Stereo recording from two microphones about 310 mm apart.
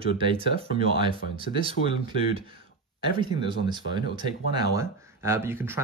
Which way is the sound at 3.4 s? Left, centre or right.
Centre.